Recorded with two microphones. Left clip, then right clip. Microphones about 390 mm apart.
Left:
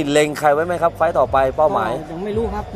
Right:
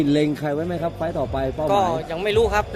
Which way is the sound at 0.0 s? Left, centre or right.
Left.